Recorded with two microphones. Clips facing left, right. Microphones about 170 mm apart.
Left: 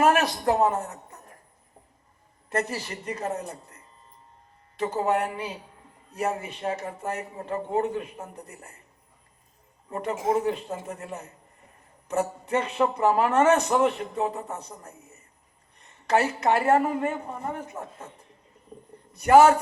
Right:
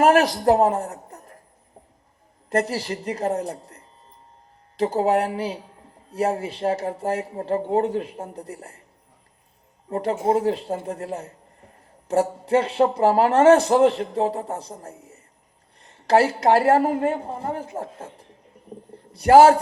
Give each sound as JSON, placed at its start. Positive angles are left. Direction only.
{"t": 0.0, "sound": "speech", "side_deg": -35}
{"t": 2.5, "sound": "speech", "side_deg": -35}
{"t": 9.9, "sound": "speech", "side_deg": -30}
{"t": 19.1, "sound": "speech", "side_deg": -30}